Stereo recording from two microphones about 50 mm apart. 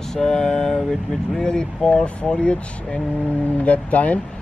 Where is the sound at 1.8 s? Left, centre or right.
Left.